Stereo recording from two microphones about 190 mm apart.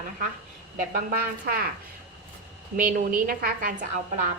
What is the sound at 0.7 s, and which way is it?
Speech, 50° right (ahead or behind).